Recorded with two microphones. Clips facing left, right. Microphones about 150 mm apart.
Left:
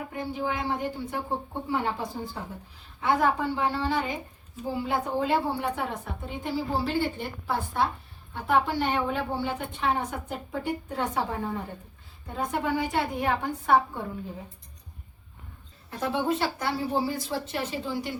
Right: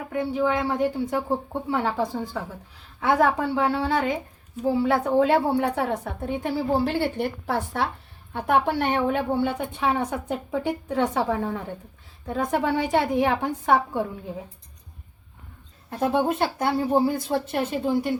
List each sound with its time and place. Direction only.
0.1 s a woman's voice: 85° right; by 9.5 s 60° right (ahead or behind)
9.9 s a woman's voice: 90° right
15.9 s a woman's voice: 50° right (ahead or behind)